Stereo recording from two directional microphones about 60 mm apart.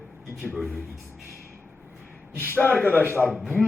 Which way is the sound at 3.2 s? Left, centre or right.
Centre.